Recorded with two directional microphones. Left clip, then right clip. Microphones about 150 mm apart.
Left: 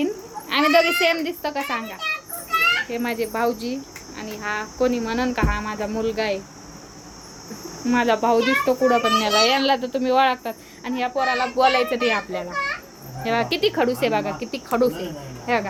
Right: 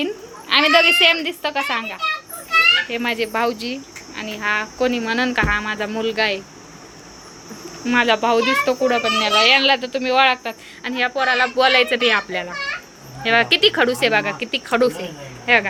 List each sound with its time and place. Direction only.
0.0 s a woman's voice: 10° left (ahead or behind)
7.9 s speech: 15° left (ahead or behind)
8.9 s speech: 25° left (ahead or behind)
10.8 s speech: 10° left (ahead or behind)